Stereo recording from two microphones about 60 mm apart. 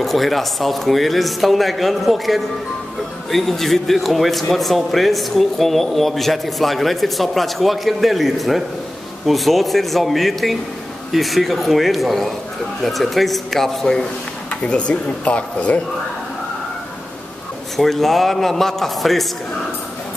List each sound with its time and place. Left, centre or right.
0.0 s a man's voice: centre; by 15.8 s left
17.7 s a man's voice: centre